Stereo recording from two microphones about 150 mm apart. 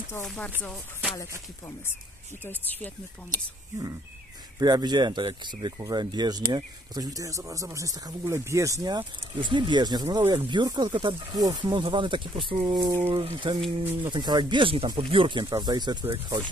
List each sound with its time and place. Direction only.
0.2 s speech: 5° left (ahead or behind)
0.6 s music: 5° left (ahead or behind)
2.4 s speech: 10° left (ahead or behind)
4.6 s speech: 25° right (ahead or behind)